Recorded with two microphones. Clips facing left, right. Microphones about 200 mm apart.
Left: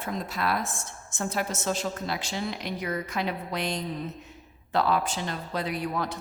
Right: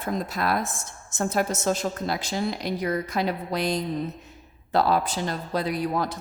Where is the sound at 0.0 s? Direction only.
40° right (ahead or behind).